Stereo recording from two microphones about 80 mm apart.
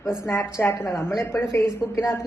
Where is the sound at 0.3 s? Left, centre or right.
Left.